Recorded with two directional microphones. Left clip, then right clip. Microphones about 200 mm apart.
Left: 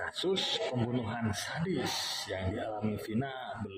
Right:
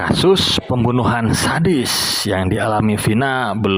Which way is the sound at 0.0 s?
40° right (ahead or behind).